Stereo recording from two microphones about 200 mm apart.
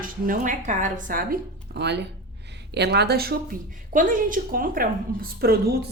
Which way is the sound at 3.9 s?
40° right (ahead or behind).